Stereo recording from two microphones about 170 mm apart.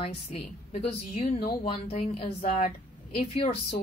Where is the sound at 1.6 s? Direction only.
40° left (ahead or behind).